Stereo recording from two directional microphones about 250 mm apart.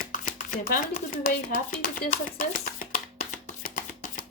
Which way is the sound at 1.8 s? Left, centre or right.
Left.